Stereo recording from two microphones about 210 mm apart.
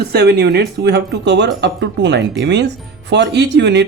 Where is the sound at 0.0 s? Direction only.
50° right (ahead or behind).